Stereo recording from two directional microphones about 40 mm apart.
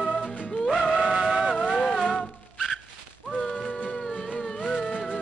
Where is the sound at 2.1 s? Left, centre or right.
Centre.